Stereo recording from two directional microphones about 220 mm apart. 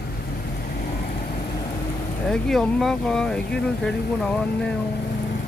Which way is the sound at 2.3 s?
Centre (ahead or behind).